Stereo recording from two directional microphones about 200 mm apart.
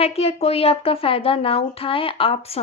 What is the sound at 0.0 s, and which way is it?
A woman's voice, 30° left (ahead or behind).